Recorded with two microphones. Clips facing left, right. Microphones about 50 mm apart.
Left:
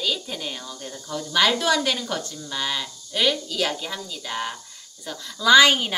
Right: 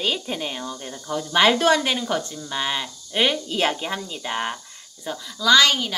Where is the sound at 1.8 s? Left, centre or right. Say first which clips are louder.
Right 2 dB; centre.